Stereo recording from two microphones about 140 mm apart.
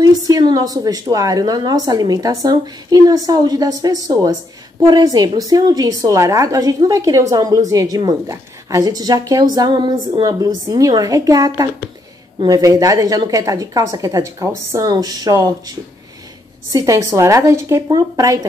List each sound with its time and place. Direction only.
0.0 s a woman's voice: 30° right (ahead or behind)
16.7 s a woman's voice: 25° right (ahead or behind)